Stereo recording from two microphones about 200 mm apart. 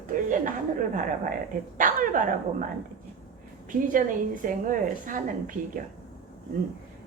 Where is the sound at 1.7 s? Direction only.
40° right (ahead or behind).